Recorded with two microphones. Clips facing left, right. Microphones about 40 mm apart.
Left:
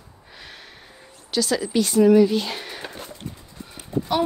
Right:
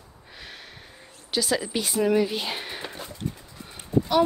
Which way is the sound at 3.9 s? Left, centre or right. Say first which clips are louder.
Right 3 dB; left.